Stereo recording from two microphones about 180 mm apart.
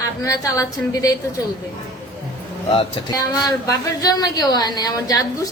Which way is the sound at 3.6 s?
20° left (ahead or behind).